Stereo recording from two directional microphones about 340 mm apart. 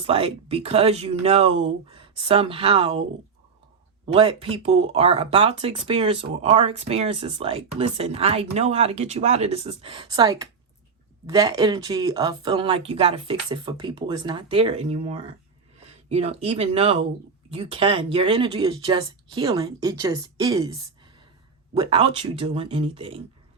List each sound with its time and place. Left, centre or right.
0.0 s speech: centre
4.0 s speech: centre